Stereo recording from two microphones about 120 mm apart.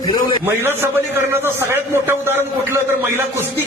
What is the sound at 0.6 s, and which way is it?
A man's voice, 20° right (ahead or behind).